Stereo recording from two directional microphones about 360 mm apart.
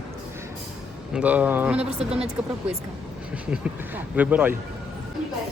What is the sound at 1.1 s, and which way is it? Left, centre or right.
Speech, centre.